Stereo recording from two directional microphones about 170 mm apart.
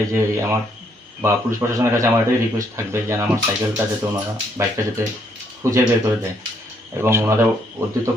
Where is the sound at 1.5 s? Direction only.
15° right (ahead or behind).